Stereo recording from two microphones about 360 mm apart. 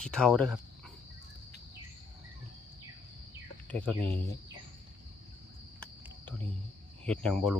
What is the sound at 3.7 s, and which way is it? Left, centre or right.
Speech, centre.